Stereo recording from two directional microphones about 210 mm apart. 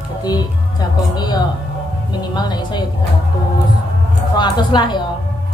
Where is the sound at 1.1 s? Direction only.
20° left (ahead or behind).